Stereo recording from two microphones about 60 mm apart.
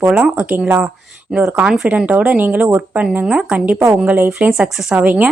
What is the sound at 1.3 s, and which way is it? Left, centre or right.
Speech, centre.